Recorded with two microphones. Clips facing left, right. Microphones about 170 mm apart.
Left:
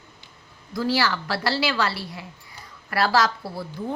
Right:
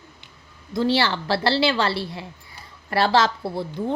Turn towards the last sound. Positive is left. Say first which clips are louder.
# right 4 dB
turn(degrees=-25)  # may be behind; listen again after turning